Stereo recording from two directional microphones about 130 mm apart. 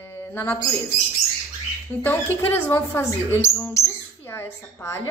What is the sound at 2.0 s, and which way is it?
Speech, 15° left (ahead or behind).